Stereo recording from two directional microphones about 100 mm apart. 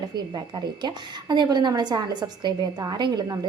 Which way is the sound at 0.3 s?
45° right (ahead or behind).